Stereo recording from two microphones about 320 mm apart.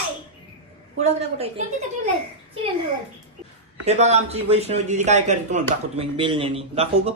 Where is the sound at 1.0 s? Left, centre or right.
Centre.